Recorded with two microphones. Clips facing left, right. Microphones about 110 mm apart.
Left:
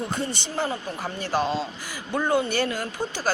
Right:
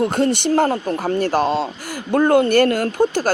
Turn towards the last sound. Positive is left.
turn(degrees=-55)  # may be behind; listen again after turning